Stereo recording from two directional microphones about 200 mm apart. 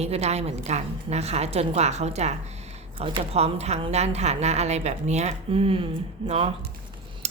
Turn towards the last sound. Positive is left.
turn(degrees=-30)  # may be behind; listen again after turning